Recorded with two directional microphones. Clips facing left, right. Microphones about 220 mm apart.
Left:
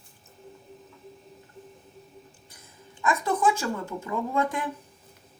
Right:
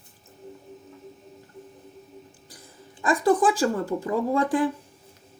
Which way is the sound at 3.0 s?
35° right (ahead or behind).